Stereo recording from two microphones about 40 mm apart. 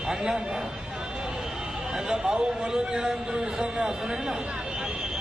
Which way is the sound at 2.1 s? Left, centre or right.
Right.